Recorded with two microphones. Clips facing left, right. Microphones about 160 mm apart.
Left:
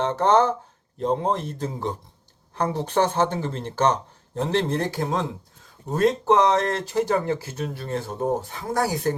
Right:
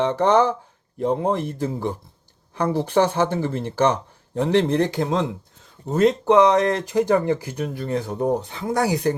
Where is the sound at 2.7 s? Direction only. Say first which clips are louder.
Right 3 dB; 10° right (ahead or behind).